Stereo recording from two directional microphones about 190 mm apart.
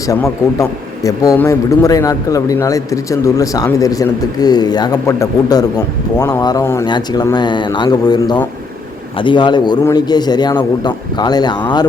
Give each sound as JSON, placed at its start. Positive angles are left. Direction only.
{"t": 0.0, "sound": "a man's voice", "side_deg": 15}